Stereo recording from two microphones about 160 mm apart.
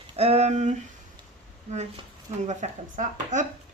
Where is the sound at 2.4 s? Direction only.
50° right (ahead or behind).